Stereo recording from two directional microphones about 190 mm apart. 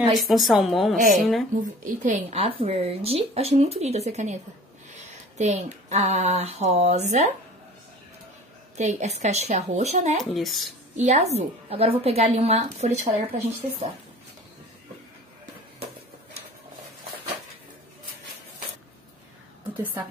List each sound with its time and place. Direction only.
0.2 s a woman's voice: centre (ahead or behind)
1.6 s a woman's voice: 35° right (ahead or behind)
8.7 s a woman's voice: 35° right (ahead or behind)
10.3 s a woman's voice: centre (ahead or behind)
11.0 s a woman's voice: 35° right (ahead or behind)
19.8 s a woman's voice: 10° right (ahead or behind)